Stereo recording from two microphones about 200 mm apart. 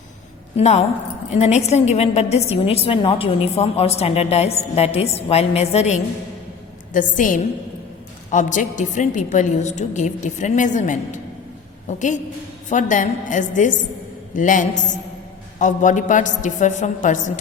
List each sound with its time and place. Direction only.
0.5 s a woman's voice: 30° left (ahead or behind)